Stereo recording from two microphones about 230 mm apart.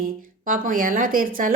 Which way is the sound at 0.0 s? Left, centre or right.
Right.